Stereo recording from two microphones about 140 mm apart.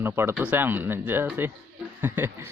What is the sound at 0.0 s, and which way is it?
A man's voice, 15° right (ahead or behind).